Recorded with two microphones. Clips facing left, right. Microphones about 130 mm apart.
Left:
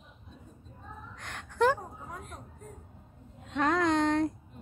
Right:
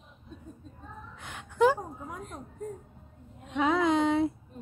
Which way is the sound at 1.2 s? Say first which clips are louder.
Right 3 dB; 5° right (ahead or behind).